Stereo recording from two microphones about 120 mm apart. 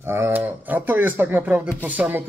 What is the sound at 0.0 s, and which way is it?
Speech, 20° right (ahead or behind).